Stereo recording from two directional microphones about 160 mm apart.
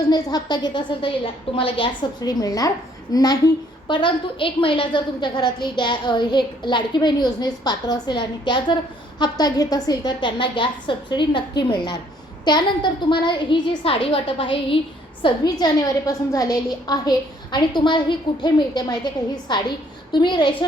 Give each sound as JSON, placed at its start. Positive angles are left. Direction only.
{"t": 0.1, "sound": "a woman's voice", "side_deg": 25}